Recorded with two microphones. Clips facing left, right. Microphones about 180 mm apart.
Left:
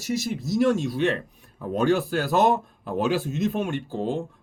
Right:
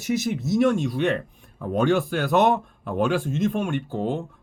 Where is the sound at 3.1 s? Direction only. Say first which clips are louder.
Right 1 dB; 50° right (ahead or behind).